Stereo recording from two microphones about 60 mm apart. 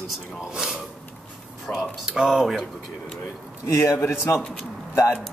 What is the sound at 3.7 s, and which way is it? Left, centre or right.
Speech, left.